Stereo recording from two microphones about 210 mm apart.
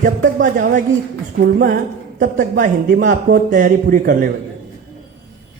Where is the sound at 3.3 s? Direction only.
40° right (ahead or behind).